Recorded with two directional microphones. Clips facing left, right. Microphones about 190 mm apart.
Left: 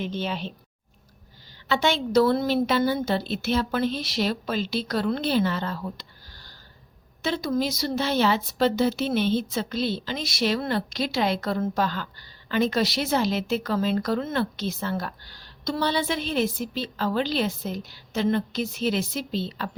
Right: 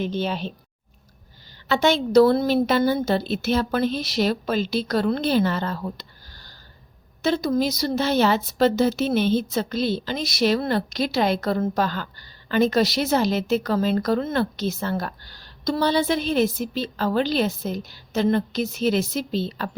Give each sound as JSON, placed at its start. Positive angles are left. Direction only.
{"t": 0.0, "sound": "a woman's voice", "side_deg": -40}
{"t": 1.6, "sound": "speech", "side_deg": -45}